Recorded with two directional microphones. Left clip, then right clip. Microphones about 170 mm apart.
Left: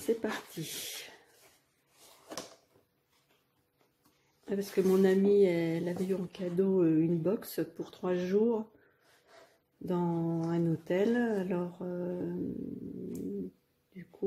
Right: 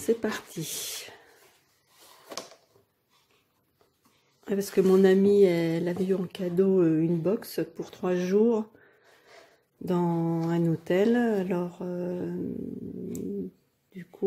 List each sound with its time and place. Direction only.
0.0 s speech: 25° right (ahead or behind)
4.5 s speech: 30° right (ahead or behind)
9.8 s speech: 30° right (ahead or behind)